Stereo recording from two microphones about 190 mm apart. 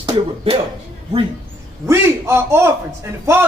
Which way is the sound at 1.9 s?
15° right (ahead or behind).